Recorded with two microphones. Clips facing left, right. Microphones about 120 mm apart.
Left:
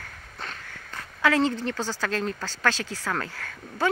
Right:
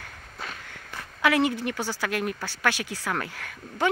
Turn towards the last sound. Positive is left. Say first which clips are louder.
# even
turn(degrees=-15)  # may be behind; listen again after turning